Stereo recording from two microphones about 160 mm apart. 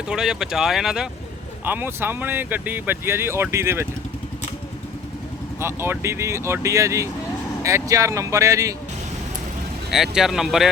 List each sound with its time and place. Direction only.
0.1 s speech: 5° right (ahead or behind)
5.5 s speech: 15° right (ahead or behind)
9.9 s speech: centre (ahead or behind)